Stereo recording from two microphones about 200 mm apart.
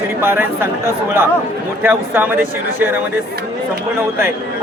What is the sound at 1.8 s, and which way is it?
Speech, 10° right (ahead or behind).